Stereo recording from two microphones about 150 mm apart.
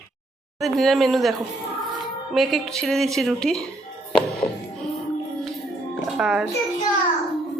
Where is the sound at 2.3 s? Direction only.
Centre (ahead or behind).